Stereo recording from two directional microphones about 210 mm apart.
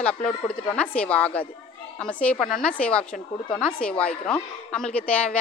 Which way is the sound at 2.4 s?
40° left (ahead or behind).